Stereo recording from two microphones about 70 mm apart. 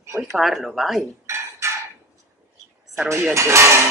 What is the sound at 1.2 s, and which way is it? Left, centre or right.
Dishes, right.